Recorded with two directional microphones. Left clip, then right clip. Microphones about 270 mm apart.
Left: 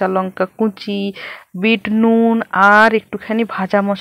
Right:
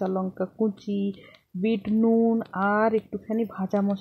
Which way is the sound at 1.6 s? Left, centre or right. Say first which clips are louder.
Left 10 dB; centre.